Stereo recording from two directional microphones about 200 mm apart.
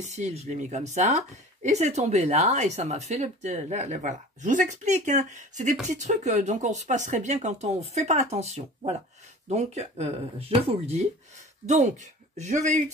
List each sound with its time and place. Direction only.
0.0 s speech: 35° right (ahead or behind)
11.6 s speech: 35° right (ahead or behind)